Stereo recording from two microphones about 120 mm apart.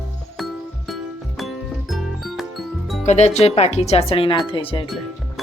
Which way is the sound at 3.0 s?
70° left (ahead or behind).